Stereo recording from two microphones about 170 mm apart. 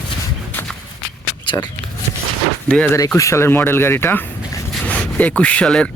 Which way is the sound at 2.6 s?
5° left (ahead or behind).